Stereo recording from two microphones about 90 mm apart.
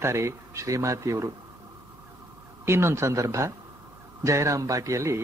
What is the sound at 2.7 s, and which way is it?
Speech, 30° right (ahead or behind).